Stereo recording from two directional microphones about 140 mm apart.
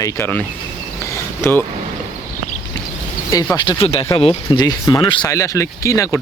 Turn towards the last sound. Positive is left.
turn(degrees=20)  # may be behind; listen again after turning